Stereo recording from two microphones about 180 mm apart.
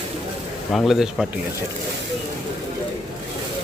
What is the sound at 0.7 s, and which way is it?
Speech, centre (ahead or behind).